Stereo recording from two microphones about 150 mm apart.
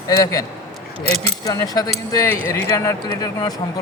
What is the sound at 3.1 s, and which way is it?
Speech, 25° left (ahead or behind).